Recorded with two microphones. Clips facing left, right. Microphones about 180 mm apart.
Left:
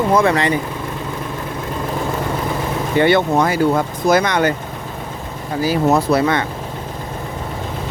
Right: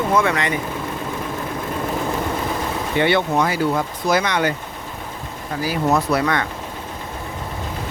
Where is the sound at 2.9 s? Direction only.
45° left (ahead or behind).